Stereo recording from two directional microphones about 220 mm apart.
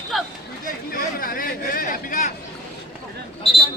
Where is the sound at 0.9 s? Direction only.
40° left (ahead or behind).